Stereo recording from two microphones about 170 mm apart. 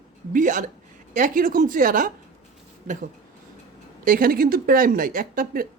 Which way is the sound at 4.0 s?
55° right (ahead or behind).